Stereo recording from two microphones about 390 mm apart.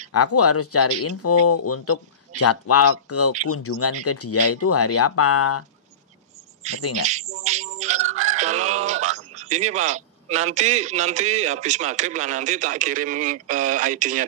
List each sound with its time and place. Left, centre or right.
0.1 s speech: left
6.6 s speech: centre
7.0 s music: centre